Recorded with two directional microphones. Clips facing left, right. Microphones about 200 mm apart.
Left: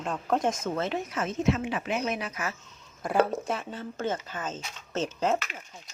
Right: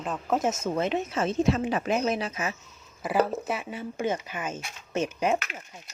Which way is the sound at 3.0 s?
5° right (ahead or behind).